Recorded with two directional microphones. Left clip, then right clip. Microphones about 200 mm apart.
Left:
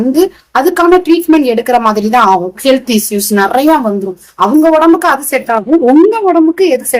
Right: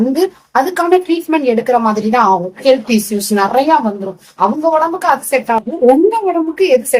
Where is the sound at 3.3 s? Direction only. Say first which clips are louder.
Left 3 dB; 20° left (ahead or behind).